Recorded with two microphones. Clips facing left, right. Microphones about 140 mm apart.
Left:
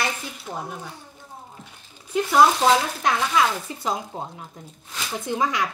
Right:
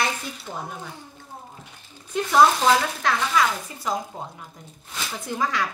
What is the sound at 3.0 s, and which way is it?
A woman's voice, 20° left (ahead or behind).